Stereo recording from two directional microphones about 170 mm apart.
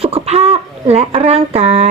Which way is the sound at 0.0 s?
35° right (ahead or behind).